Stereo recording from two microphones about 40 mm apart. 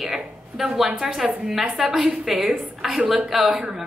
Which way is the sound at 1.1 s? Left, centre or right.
Centre.